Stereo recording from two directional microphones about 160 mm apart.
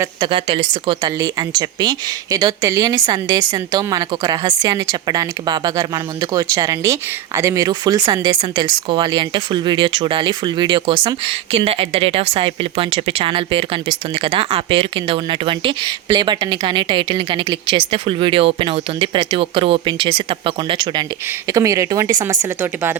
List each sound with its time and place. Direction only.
0.2 s a woman's voice: 35° right (ahead or behind); by 23.0 s 15° right (ahead or behind)